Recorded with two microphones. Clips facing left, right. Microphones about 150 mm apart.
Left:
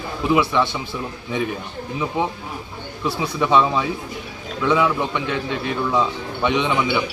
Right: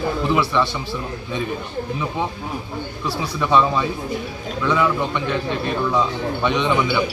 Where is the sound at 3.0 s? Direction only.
20° left (ahead or behind).